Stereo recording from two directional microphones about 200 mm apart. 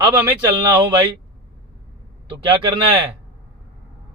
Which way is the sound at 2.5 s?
25° right (ahead or behind).